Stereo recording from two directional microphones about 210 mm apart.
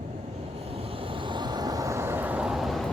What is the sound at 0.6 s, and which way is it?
Vehicle, 25° right (ahead or behind).